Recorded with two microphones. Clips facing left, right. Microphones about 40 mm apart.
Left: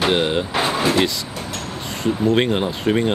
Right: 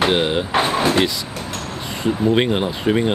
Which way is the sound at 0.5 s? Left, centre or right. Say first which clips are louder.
Right 3 dB; right.